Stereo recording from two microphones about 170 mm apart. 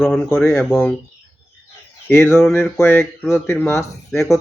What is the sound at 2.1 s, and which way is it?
Speech, 15° left (ahead or behind).